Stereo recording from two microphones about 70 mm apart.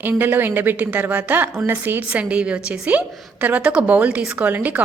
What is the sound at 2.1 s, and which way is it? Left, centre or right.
A woman's voice, centre.